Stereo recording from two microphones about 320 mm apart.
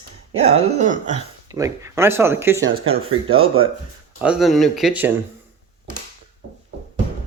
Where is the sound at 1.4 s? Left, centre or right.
Centre.